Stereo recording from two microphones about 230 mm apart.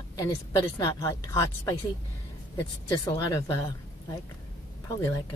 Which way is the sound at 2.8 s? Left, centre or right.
Centre.